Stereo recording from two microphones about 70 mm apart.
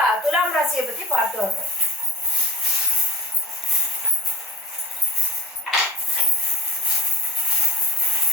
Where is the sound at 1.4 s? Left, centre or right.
Centre.